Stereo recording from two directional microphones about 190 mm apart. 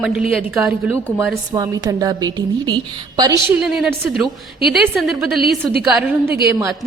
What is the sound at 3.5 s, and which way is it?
A woman's voice, 5° right (ahead or behind).